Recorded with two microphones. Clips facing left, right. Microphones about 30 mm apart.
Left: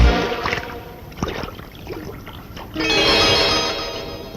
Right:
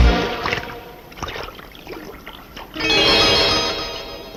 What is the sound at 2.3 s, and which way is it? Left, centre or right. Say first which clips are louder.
Music: left 1 dB; right.